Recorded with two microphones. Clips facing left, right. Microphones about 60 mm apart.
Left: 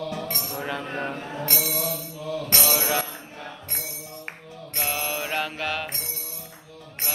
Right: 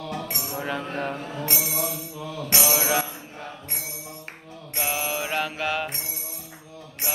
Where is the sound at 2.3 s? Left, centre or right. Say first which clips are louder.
Right 1 dB; centre.